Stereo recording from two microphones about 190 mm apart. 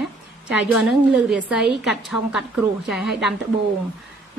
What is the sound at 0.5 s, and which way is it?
A woman's voice, centre (ahead or behind).